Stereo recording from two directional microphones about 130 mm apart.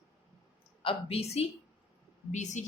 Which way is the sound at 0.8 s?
45° left (ahead or behind).